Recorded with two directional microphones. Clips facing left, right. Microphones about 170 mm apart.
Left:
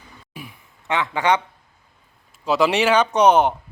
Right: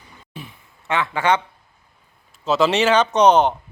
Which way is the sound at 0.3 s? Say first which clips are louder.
Right 1 dB; 15° left (ahead or behind).